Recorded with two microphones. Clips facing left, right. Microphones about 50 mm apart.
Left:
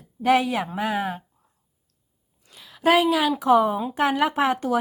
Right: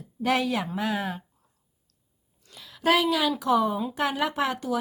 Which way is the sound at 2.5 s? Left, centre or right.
Centre.